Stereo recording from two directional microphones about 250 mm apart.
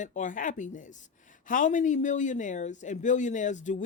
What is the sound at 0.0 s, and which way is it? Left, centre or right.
Speech, left.